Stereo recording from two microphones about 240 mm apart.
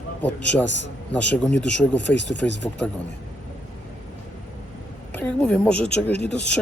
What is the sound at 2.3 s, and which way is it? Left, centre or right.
Speech, left.